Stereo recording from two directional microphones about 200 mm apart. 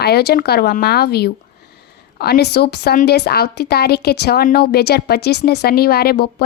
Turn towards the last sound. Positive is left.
turn(degrees=50)  # may be behind; listen again after turning